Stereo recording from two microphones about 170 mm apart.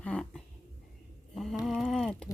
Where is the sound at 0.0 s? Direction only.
5° left (ahead or behind).